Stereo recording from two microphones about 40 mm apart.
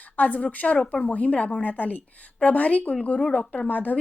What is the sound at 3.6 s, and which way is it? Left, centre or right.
Speech, left.